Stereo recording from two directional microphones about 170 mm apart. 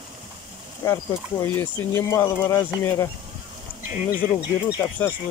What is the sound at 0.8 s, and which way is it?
Speech, 15° left (ahead or behind).